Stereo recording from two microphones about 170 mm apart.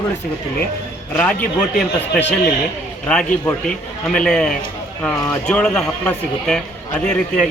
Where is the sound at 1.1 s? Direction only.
10° left (ahead or behind).